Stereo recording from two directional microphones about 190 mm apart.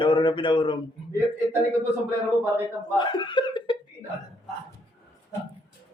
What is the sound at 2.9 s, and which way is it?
Speech, 25° left (ahead or behind).